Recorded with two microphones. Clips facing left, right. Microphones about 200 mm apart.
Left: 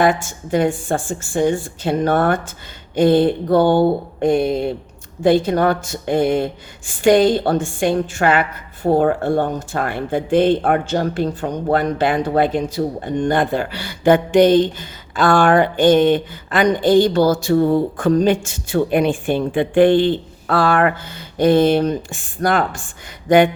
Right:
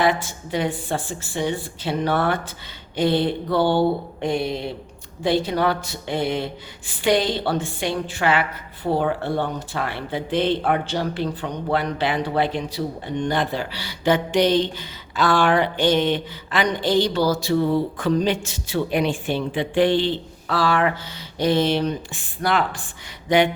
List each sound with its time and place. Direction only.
0.0 s speech: 45° left (ahead or behind)